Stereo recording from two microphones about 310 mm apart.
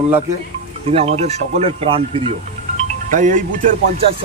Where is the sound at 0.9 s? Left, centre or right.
Centre.